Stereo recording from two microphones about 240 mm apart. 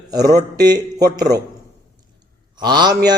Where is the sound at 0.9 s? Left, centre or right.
Right.